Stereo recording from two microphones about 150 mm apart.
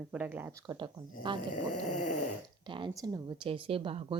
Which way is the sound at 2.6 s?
35° right (ahead or behind).